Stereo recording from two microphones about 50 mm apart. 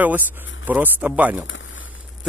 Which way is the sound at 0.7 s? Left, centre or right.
Right.